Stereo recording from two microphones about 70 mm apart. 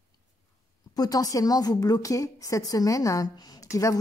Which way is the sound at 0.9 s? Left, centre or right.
Left.